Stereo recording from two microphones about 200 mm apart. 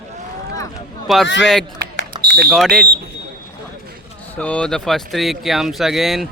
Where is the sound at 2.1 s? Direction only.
20° right (ahead or behind).